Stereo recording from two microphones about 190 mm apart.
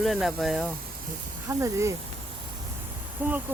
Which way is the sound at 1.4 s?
15° right (ahead or behind).